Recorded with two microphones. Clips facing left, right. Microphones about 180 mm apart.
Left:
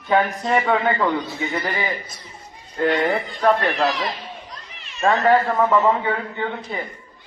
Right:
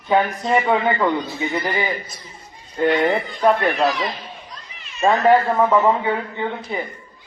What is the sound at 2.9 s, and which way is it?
Speech, 20° right (ahead or behind).